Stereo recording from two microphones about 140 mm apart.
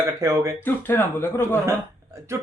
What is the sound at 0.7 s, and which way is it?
Speech, 15° left (ahead or behind).